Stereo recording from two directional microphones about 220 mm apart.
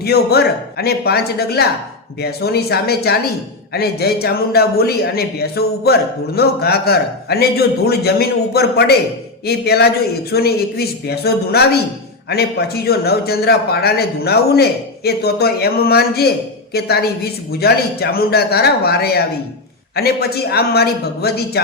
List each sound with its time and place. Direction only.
0.0 s a man's voice: 45° left (ahead or behind)